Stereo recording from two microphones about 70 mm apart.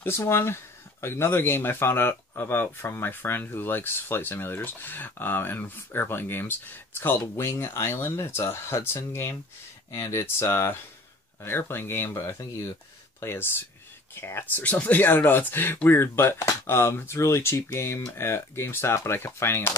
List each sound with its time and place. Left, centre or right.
0.0 s speech: left
12.1 s speech: left
13.2 s speech: left